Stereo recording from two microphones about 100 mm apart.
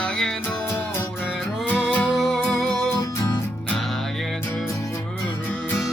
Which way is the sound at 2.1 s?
Centre (ahead or behind).